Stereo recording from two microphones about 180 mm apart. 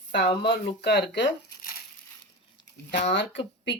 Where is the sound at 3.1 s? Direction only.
80° left.